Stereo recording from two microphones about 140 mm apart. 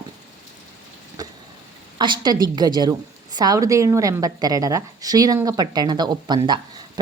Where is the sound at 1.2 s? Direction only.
25° right (ahead or behind).